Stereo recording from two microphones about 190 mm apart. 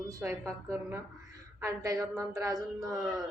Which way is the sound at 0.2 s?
10° right (ahead or behind).